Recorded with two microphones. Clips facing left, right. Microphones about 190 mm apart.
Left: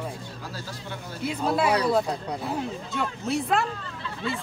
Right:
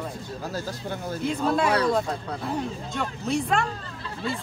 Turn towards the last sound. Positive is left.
turn(degrees=-35)  # may be behind; listen again after turning